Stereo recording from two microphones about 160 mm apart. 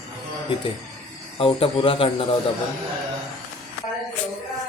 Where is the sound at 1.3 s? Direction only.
35° left (ahead or behind).